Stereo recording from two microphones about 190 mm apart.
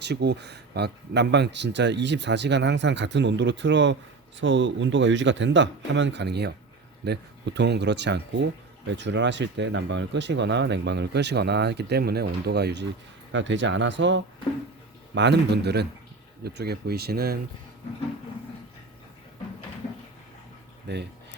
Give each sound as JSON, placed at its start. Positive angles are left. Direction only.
{"t": 0.0, "sound": "speech", "side_deg": -65}
{"t": 20.8, "sound": "speech", "side_deg": -60}